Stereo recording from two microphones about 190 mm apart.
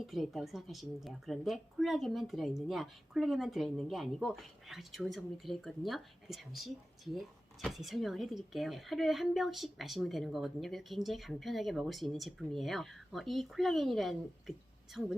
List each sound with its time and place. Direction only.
0.0 s a woman's voice: centre (ahead or behind)